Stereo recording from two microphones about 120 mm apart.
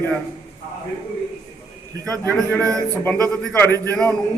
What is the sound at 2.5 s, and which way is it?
Speech, 15° left (ahead or behind).